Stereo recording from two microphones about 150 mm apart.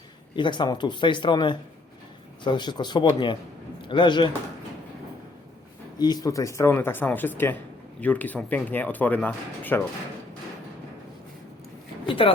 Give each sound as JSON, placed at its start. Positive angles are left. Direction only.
{"t": 0.3, "sound": "a man's voice", "side_deg": 30}
{"t": 6.0, "sound": "speech", "side_deg": 25}
{"t": 12.0, "sound": "vehicle", "side_deg": 35}